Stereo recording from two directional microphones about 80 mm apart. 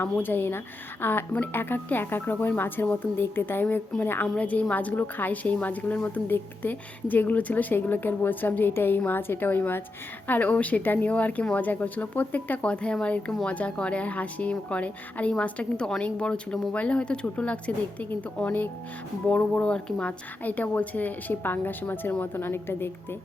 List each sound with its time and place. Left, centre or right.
0.0 s a woman's voice: left